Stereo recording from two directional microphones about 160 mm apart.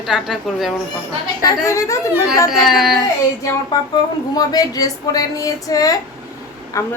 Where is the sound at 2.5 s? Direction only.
Centre (ahead or behind).